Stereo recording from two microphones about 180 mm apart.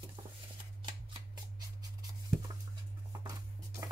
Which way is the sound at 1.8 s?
20° right (ahead or behind).